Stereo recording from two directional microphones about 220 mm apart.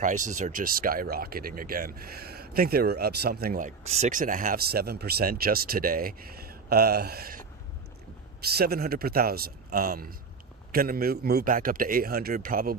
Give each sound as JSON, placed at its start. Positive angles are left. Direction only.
{"t": 0.0, "sound": "speech", "side_deg": -35}
{"t": 3.8, "sound": "speech", "side_deg": -30}
{"t": 8.5, "sound": "a man's voice", "side_deg": -45}